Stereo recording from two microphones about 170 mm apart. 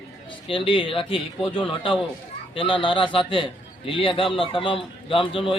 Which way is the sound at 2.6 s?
30° left (ahead or behind).